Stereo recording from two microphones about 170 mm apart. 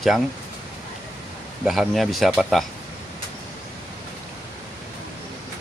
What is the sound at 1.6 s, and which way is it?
Speech, centre (ahead or behind).